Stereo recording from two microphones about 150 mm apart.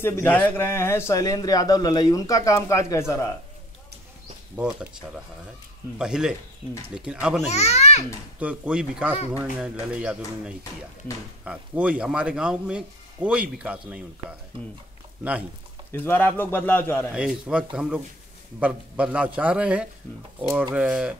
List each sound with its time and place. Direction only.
0.0 s speech: 15° left (ahead or behind)
4.6 s speech: 5° right (ahead or behind)
5.9 s speech: 5° right (ahead or behind)
7.4 s a child's voice: 45° left (ahead or behind)
8.4 s speech: 10° right (ahead or behind)
15.9 s a man's voice: 15° left (ahead or behind)
17.1 s speech: 5° right (ahead or behind)